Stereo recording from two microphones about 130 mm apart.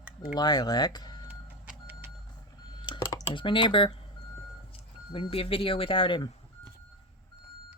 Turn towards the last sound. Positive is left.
turn(degrees=40)  # may be behind; listen again after turning